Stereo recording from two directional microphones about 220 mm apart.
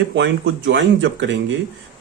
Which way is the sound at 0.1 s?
55° right (ahead or behind).